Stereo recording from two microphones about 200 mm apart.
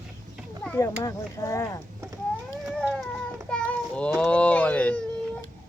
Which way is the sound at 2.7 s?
Centre (ahead or behind).